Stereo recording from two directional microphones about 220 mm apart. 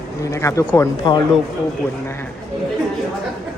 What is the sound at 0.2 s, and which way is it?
Speech, 15° left (ahead or behind).